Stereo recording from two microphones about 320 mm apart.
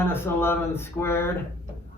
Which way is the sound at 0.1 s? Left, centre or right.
Centre.